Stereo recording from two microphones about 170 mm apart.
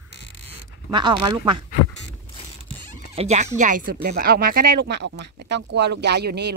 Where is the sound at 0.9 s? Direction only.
25° right (ahead or behind).